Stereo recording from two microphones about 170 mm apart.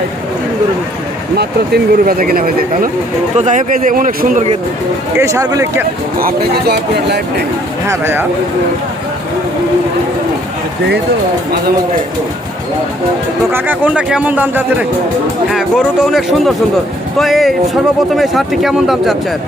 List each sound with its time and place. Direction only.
1.4 s speech: 65° right (ahead or behind)
3.3 s a man's voice: 45° right (ahead or behind)
5.1 s speech: 15° right (ahead or behind)
6.1 s speech: 65° right (ahead or behind)
7.9 s speech: 15° right (ahead or behind)
13.5 s speech: 10° right (ahead or behind)